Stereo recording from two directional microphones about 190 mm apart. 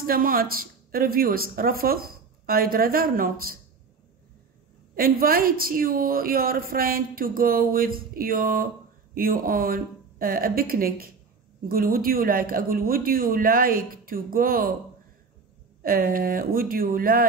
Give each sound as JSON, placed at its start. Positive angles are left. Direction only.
{"t": 0.0, "sound": "a woman's voice", "side_deg": -50}
{"t": 4.9, "sound": "a woman's voice", "side_deg": -50}
{"t": 15.8, "sound": "a woman's voice", "side_deg": -50}